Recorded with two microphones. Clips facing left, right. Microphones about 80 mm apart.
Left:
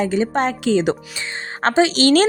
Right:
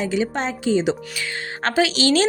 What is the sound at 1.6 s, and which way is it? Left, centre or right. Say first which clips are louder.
Speech: left 4 dB; left.